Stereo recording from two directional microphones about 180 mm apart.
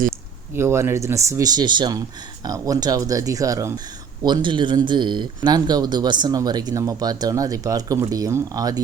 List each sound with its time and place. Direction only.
0.5 s speech: 15° right (ahead or behind)